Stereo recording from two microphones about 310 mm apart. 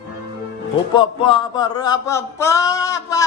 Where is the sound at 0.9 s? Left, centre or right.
Centre.